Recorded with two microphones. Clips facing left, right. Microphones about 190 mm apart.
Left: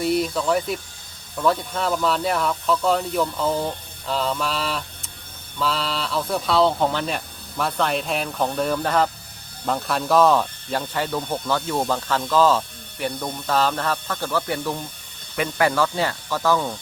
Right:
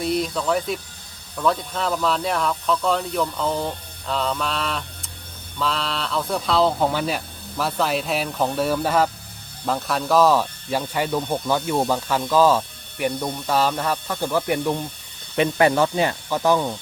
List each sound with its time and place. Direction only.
0.0 s speech: 5° left (ahead or behind); by 16.7 s 15° right (ahead or behind)